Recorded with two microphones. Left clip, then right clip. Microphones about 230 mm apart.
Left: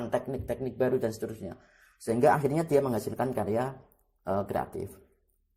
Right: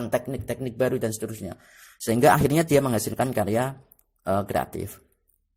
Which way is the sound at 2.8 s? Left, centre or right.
Right.